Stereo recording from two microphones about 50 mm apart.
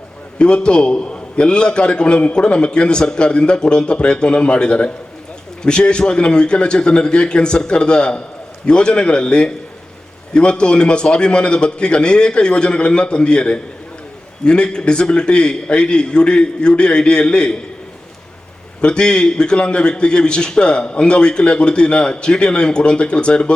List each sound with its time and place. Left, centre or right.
0.3 s a man's voice: centre
18.8 s a man's voice: centre